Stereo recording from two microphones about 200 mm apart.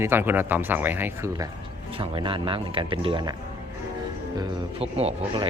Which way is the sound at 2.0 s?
25° right (ahead or behind).